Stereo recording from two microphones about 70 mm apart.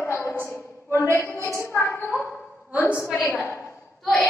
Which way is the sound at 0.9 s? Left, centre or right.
Right.